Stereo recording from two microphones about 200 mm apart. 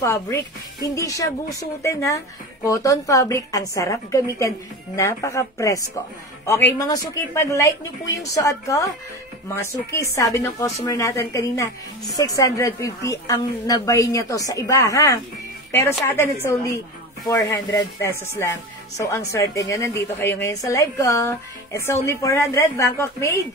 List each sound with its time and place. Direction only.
0.0 s speech: 15° left (ahead or behind)
6.8 s speech: 15° left (ahead or behind)